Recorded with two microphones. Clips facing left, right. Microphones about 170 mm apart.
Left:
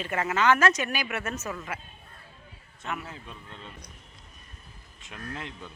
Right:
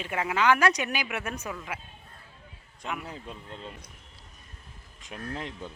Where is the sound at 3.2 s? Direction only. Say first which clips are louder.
Right 4 dB; 35° right (ahead or behind).